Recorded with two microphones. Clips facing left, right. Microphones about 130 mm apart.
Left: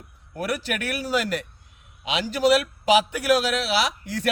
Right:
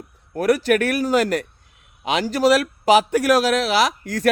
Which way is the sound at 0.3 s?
45° right (ahead or behind).